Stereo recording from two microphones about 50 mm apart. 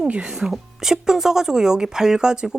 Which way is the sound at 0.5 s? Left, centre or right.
Centre.